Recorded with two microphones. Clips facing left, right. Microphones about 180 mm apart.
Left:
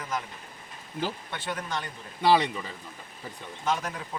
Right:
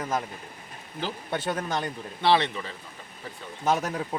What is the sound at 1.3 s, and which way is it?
Speech, 45° right (ahead or behind).